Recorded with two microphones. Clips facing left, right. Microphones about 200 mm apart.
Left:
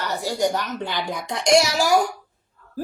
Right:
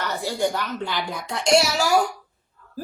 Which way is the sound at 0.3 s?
15° left (ahead or behind).